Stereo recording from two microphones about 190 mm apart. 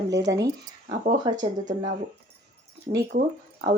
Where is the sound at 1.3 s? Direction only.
25° right (ahead or behind).